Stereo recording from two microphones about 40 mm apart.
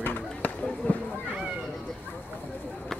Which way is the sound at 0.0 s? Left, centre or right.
Left.